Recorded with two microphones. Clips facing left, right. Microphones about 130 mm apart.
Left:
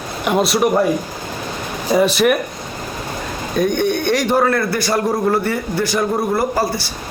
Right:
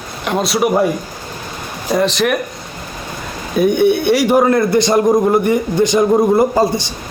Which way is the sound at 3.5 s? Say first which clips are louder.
Right 5 dB; 10° right (ahead or behind).